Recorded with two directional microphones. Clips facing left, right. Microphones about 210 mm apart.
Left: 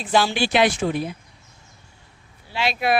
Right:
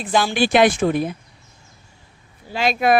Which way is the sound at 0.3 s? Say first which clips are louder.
Right 4 dB; 50° right (ahead or behind).